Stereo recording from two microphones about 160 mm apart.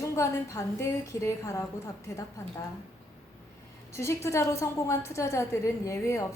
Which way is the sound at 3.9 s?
15° left (ahead or behind).